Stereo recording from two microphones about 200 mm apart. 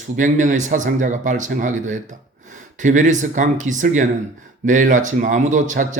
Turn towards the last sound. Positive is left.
turn(degrees=-40)  # may be behind; listen again after turning